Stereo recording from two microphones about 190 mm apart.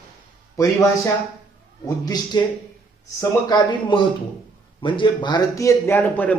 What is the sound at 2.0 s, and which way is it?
A man's voice, 20° left (ahead or behind).